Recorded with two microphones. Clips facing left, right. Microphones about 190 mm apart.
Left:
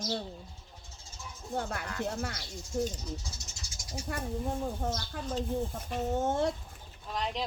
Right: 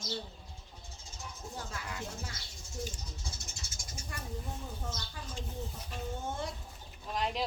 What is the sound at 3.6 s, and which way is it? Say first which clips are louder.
Cat: left 1 dB; 25° right (ahead or behind).